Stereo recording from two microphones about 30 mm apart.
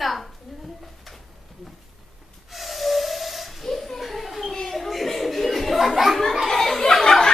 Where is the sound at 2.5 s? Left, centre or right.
Centre.